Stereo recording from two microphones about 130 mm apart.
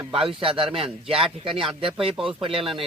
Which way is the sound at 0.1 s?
40° right (ahead or behind).